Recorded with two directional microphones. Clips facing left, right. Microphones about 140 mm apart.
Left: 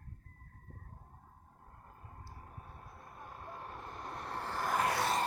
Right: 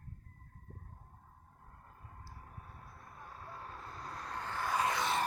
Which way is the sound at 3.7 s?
25° left (ahead or behind).